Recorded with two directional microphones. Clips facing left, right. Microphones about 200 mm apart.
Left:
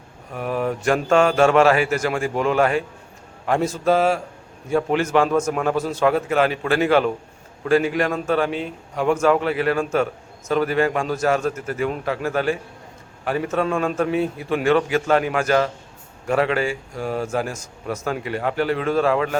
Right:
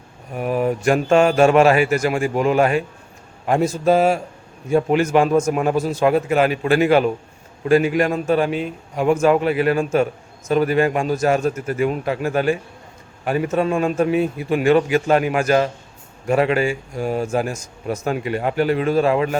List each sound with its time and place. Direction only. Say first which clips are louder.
0.3 s a man's voice: right 3 dB; 15° right (ahead or behind)